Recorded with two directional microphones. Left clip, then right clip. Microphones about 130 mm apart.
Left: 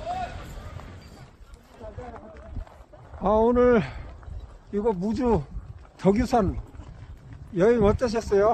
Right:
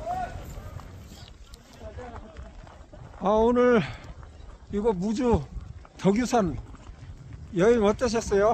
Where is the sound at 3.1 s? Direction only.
10° right (ahead or behind).